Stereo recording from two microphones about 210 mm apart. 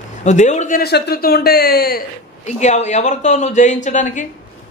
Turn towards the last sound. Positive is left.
turn(degrees=35)  # may be behind; listen again after turning